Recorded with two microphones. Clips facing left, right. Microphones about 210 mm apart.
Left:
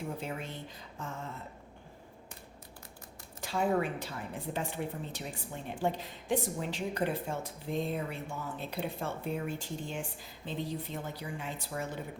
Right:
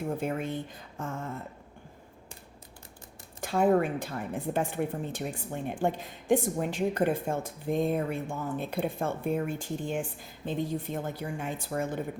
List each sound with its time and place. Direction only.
0.2 s a woman's voice: 55° right (ahead or behind)
3.4 s a woman's voice: 50° right (ahead or behind)